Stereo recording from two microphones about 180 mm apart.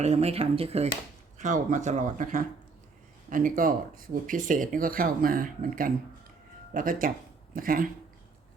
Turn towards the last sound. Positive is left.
turn(degrees=-50)  # may be behind; listen again after turning